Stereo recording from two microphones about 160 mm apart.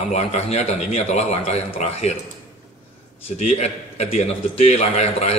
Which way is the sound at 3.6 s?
40° left (ahead or behind).